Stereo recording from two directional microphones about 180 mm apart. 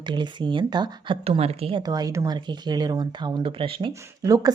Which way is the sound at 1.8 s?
20° right (ahead or behind).